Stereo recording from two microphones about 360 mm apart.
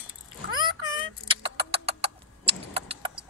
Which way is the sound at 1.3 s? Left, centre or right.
Centre.